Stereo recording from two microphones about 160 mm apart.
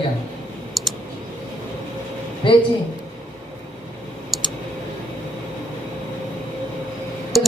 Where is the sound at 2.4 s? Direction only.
30° left (ahead or behind).